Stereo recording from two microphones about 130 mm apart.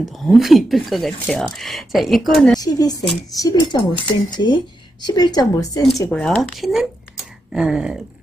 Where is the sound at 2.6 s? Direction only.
30° left (ahead or behind).